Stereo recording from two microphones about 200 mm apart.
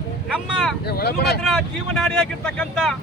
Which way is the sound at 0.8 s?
55° left (ahead or behind).